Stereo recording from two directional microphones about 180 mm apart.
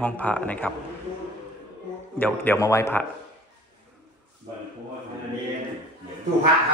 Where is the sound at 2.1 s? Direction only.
10° left (ahead or behind).